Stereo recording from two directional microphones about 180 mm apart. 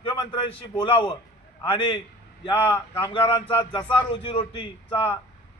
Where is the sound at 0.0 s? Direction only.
30° left (ahead or behind).